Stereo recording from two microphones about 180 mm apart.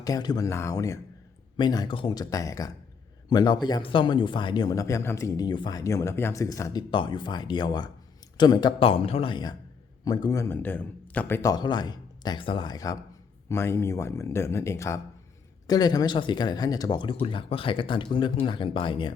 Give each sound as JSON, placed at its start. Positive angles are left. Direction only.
{"t": 0.0, "sound": "speech", "side_deg": 20}
{"t": 11.4, "sound": "speech", "side_deg": 25}